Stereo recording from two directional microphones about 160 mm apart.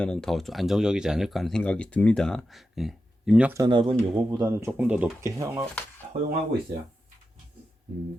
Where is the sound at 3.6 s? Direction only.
30° right (ahead or behind).